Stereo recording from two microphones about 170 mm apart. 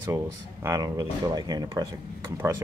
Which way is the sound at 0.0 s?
20° right (ahead or behind).